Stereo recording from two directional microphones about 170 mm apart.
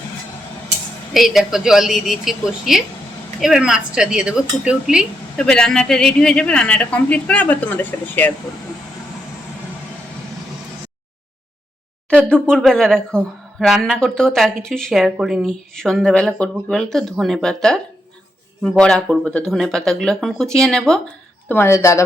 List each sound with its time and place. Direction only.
1.1 s speech: centre (ahead or behind)
12.1 s speech: 5° left (ahead or behind)
18.8 s speech: 5° left (ahead or behind)
21.5 s speech: 15° left (ahead or behind)